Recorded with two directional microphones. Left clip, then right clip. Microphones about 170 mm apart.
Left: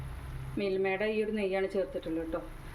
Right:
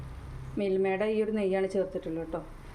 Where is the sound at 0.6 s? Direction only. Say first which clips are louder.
Right 3 dB; 15° right (ahead or behind).